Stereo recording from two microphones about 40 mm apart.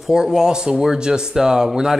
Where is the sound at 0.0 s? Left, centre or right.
Centre.